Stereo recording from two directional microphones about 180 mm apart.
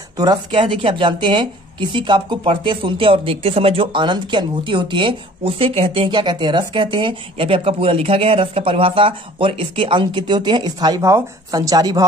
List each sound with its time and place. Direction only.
0.2 s a woman's voice: 25° right (ahead or behind)